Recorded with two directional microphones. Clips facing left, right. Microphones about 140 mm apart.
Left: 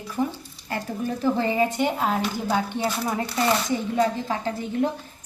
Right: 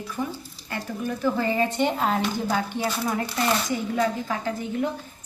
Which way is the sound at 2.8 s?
15° left (ahead or behind).